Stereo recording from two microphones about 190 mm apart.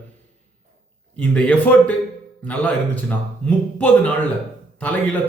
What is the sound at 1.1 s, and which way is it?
A man's voice, 5° left (ahead or behind).